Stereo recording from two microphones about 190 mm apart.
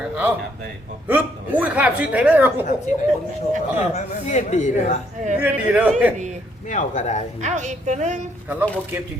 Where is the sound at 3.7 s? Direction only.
40° left (ahead or behind).